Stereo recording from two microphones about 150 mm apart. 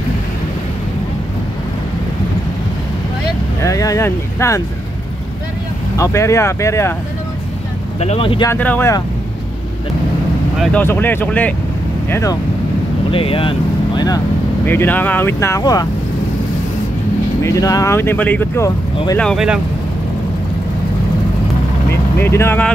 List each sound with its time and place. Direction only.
3.6 s speech: 20° left (ahead or behind)
5.9 s speech: 20° left (ahead or behind)
8.0 s speech: 40° left (ahead or behind)
8.5 s speech: 10° left (ahead or behind)
10.6 s speech: 10° left (ahead or behind)
12.1 s speech: 20° left (ahead or behind)
13.1 s speech: 35° left (ahead or behind)
14.7 s speech: 15° left (ahead or behind)
17.4 s speech: 20° left (ahead or behind); by 19.4 s 5° left (ahead or behind)
22.2 s speech: 15° left (ahead or behind)